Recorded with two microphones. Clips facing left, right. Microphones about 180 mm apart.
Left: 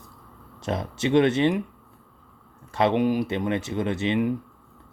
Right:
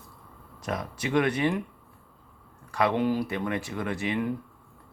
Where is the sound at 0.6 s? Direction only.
25° left (ahead or behind).